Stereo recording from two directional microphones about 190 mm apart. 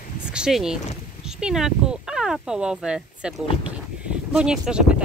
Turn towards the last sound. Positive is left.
turn(degrees=-5)  # may be behind; listen again after turning